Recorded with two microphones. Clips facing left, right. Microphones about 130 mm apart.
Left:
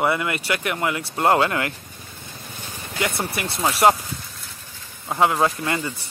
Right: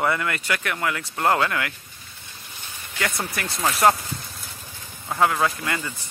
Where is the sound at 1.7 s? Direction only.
50° left (ahead or behind).